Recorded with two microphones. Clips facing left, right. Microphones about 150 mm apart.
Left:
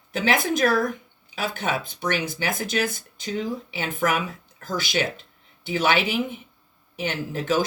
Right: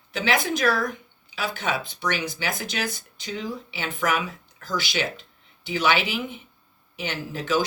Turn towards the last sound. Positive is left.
turn(degrees=50)  # may be behind; listen again after turning